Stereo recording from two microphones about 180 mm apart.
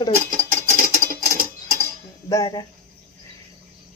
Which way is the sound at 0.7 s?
50° right (ahead or behind).